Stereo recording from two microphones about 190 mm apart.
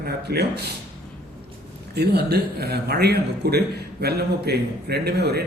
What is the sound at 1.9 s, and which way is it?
Speech, 60° right (ahead or behind).